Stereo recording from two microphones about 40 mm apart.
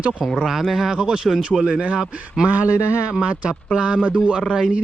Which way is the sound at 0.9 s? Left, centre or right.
Centre.